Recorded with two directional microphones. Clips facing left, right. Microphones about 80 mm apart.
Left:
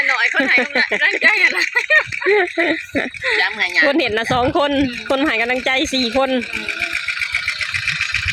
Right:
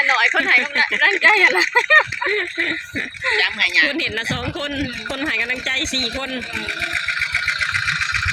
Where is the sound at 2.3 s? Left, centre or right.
Left.